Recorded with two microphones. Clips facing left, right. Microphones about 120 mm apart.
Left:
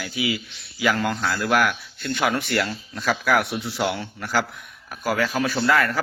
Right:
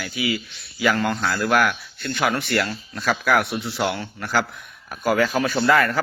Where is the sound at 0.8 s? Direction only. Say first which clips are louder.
Right 1 dB; 5° left (ahead or behind).